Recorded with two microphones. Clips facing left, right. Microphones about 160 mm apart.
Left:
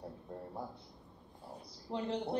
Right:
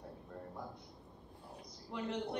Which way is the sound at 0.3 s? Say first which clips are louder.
Left 3 dB; 35° left (ahead or behind).